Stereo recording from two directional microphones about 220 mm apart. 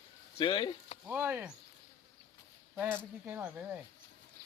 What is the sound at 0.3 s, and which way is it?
Speech, 20° left (ahead or behind).